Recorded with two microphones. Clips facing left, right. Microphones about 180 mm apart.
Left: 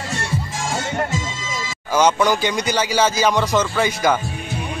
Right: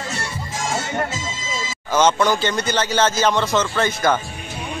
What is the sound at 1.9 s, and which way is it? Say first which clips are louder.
Speech: left 1 dB; 10° left (ahead or behind).